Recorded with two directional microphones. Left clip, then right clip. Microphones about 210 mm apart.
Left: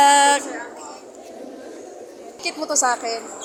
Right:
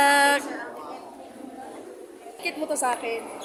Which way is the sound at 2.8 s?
15° left (ahead or behind).